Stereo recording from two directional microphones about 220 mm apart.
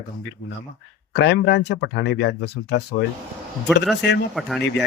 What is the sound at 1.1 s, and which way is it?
Speech, 50° left (ahead or behind).